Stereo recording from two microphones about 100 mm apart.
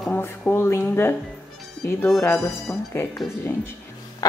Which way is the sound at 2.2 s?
30° left (ahead or behind).